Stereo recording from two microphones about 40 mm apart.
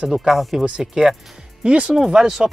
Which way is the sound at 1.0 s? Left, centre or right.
Right.